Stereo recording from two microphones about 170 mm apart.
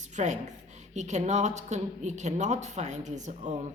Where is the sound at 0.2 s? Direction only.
45° right (ahead or behind).